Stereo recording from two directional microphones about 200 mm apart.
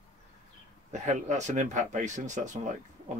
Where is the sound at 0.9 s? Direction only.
35° right (ahead or behind).